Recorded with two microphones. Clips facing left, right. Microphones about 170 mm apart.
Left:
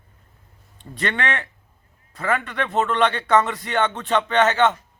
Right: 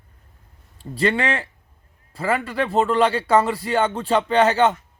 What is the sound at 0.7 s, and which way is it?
A man's voice, 30° right (ahead or behind).